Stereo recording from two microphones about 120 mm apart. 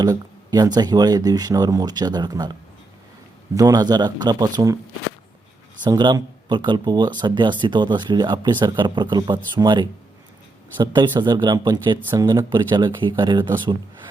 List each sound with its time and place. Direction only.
0.0 s speech: 35° right (ahead or behind)
5.8 s speech: 35° right (ahead or behind)
11.2 s speech: 40° right (ahead or behind)